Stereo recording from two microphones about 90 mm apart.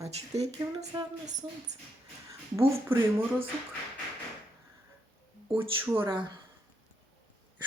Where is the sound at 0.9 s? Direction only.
45° right (ahead or behind).